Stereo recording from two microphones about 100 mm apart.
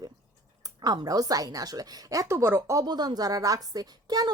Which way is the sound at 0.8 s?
40° right (ahead or behind).